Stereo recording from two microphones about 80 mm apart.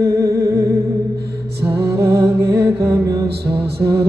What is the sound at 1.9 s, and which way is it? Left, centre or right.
Music, right.